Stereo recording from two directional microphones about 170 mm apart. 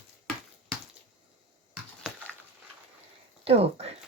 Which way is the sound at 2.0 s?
Centre (ahead or behind).